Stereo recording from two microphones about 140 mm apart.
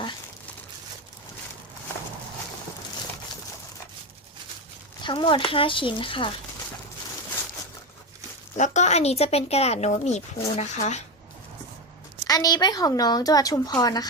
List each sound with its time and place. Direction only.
5.0 s speech: 35° left (ahead or behind)
8.5 s speech: 60° left (ahead or behind)
12.3 s a woman's voice: 30° left (ahead or behind)